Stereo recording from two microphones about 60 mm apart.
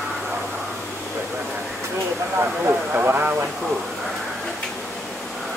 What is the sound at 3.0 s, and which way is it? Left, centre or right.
Speech, right.